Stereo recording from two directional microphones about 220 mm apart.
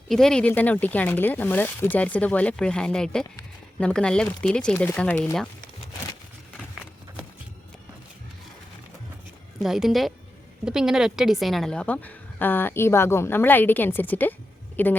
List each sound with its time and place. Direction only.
0.1 s a woman's voice: centre (ahead or behind)
9.6 s a woman's voice: centre (ahead or behind)